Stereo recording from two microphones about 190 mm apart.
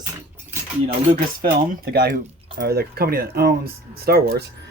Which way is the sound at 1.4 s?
55° right (ahead or behind).